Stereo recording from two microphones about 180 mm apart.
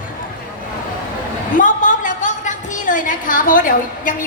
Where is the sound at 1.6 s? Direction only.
45° left (ahead or behind).